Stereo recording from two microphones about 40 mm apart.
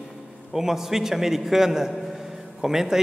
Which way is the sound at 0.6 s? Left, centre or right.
Centre.